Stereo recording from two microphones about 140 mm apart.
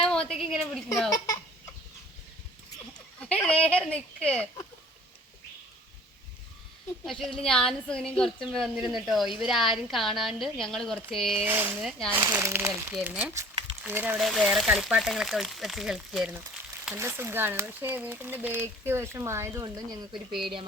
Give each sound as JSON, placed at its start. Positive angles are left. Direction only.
{"t": 0.3, "sound": "a woman's voice", "side_deg": 0}
{"t": 3.2, "sound": "speech", "side_deg": 10}
{"t": 7.0, "sound": "a woman's voice", "side_deg": 5}
{"t": 11.3, "sound": "speech", "side_deg": -15}
{"t": 11.8, "sound": "a woman's voice", "side_deg": 0}
{"t": 12.1, "sound": "speech", "side_deg": -15}
{"t": 14.2, "sound": "a woman's voice", "side_deg": 0}
{"t": 16.8, "sound": "speech", "side_deg": -15}
{"t": 20.1, "sound": "a woman's voice", "side_deg": 0}